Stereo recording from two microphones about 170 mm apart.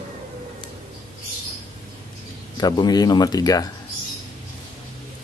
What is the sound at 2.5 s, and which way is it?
Speech, 25° left (ahead or behind).